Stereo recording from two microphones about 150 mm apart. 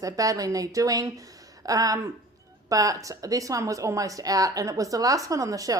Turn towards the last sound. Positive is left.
turn(degrees=-20)  # may be behind; listen again after turning